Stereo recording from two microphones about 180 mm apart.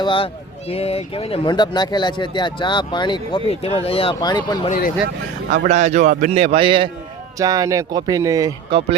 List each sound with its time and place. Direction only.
0.0 s speech: 30° left (ahead or behind)
5.6 s a man's voice: 40° right (ahead or behind); by 8.5 s 20° right (ahead or behind)